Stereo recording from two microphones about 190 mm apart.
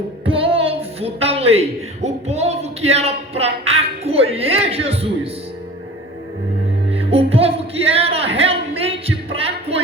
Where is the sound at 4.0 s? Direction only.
30° right (ahead or behind).